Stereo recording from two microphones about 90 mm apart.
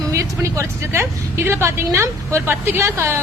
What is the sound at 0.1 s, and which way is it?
A woman's voice, 35° right (ahead or behind).